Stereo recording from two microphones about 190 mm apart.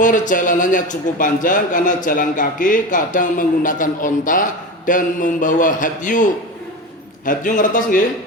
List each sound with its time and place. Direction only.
0.0 s a man's voice: 45° left (ahead or behind)
7.3 s a man's voice: 45° left (ahead or behind)